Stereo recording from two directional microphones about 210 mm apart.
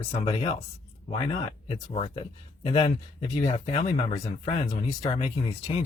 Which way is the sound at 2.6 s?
30° left (ahead or behind).